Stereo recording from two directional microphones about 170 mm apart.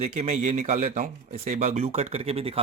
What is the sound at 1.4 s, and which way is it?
Speech, 40° right (ahead or behind).